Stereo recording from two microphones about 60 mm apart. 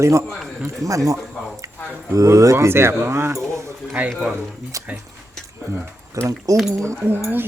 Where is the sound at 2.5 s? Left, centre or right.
Right.